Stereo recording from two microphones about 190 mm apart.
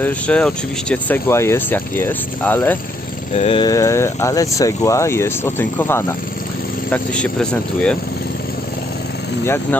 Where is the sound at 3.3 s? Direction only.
35° left (ahead or behind).